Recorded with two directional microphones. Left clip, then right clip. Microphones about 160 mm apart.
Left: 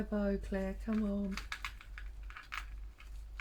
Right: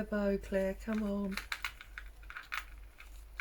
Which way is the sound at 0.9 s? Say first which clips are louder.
Right 1 dB; 15° right (ahead or behind).